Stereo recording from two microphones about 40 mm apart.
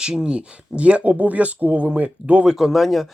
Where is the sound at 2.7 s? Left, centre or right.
Centre.